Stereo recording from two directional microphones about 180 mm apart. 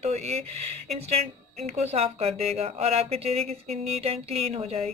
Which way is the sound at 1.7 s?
35° right (ahead or behind).